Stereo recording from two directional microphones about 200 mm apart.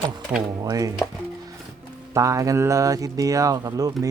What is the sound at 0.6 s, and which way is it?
Speech, 15° right (ahead or behind).